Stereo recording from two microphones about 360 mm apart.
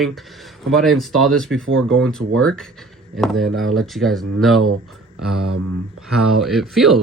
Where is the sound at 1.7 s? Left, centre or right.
Right.